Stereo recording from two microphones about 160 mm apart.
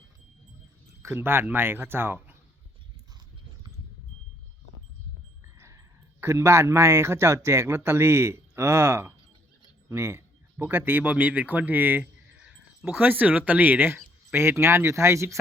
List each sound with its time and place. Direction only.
1.0 s speech: 15° right (ahead or behind)
5.5 s speech: 15° right (ahead or behind)